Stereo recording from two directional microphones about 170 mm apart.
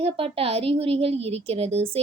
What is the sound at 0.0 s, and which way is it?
A woman's voice, 35° right (ahead or behind).